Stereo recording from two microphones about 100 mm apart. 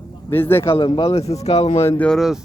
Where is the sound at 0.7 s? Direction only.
55° left (ahead or behind).